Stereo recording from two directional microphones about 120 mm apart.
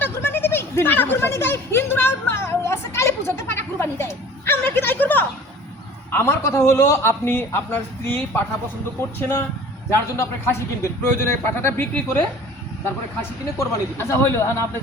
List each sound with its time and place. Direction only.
0.0 s a sound: 20° left (ahead or behind)
6.1 s a man's voice: 20° left (ahead or behind)
9.9 s a man's voice: 20° left (ahead or behind)
13.6 s a man's voice: 20° left (ahead or behind)